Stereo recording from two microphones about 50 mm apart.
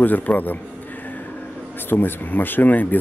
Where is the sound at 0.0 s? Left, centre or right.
Left.